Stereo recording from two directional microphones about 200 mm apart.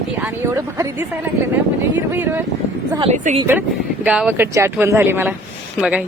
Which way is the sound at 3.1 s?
35° right (ahead or behind).